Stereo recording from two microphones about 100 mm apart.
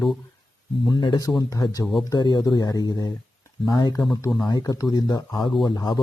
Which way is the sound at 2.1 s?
45° left (ahead or behind).